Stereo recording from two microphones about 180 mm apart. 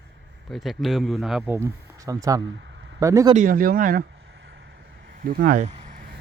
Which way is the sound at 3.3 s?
45° right (ahead or behind).